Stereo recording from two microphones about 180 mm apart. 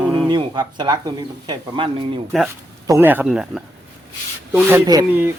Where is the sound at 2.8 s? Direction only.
15° right (ahead or behind).